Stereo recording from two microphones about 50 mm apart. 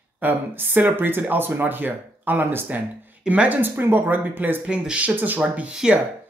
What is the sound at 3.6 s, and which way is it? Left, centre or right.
Speech, right.